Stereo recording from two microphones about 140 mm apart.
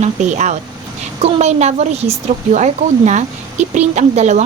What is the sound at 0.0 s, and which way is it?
Speech, 55° right (ahead or behind).